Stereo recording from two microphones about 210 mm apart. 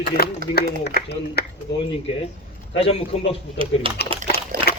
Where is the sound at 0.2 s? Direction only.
50° left (ahead or behind).